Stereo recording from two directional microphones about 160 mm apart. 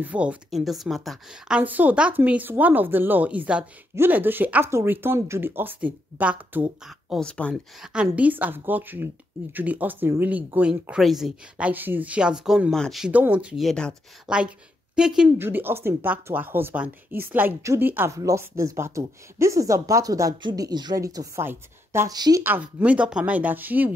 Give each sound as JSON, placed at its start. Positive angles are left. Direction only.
{"t": 0.0, "sound": "speech", "side_deg": -10}
{"t": 7.2, "sound": "speech", "side_deg": 5}
{"t": 7.8, "sound": "speech", "side_deg": -5}
{"t": 22.4, "sound": "speech", "side_deg": -10}